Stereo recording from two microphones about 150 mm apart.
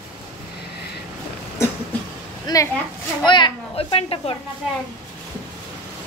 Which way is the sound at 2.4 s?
20° left (ahead or behind).